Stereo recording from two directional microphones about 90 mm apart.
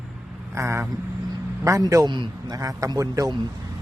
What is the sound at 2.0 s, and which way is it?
Speech, 55° right (ahead or behind).